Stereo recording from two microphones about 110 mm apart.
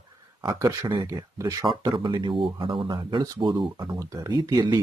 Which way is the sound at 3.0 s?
40° right (ahead or behind).